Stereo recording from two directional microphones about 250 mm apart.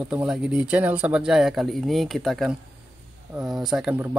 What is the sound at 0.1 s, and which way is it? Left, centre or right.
Speech, centre.